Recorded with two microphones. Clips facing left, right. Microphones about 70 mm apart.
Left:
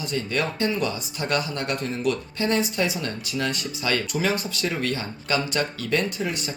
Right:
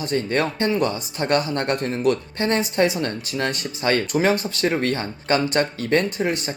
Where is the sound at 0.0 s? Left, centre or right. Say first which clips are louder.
Right 4 dB; right.